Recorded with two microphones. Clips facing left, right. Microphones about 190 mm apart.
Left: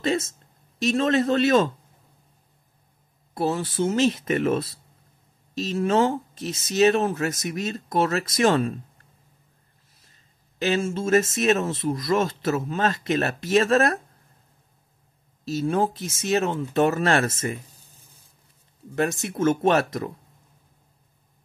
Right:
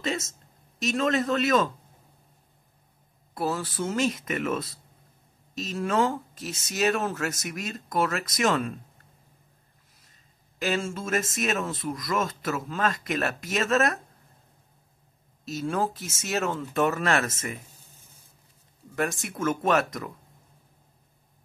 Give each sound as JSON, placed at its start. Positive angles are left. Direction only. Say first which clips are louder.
{"t": 0.0, "sound": "speech", "louder": "left 6 dB", "side_deg": 35}
{"t": 3.3, "sound": "speech", "louder": "left 5 dB", "side_deg": 20}
{"t": 10.6, "sound": "speech", "louder": "left 5 dB", "side_deg": 25}
{"t": 15.4, "sound": "speech", "louder": "left 5 dB", "side_deg": 25}
{"t": 18.9, "sound": "speech", "louder": "left 5 dB", "side_deg": 30}